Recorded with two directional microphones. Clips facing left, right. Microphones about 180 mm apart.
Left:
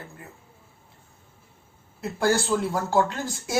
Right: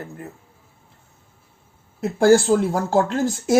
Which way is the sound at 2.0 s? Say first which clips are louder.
Right 9 dB; 50° right (ahead or behind).